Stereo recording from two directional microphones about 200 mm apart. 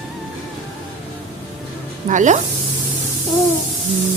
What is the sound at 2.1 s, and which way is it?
Speech, 40° right (ahead or behind).